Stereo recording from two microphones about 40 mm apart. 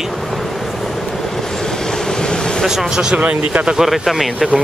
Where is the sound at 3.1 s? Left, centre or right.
Right.